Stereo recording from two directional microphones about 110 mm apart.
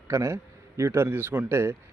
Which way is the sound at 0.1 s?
25° right (ahead or behind).